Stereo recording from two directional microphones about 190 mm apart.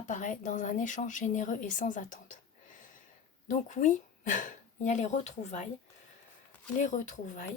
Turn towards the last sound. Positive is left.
turn(degrees=40)  # may be behind; listen again after turning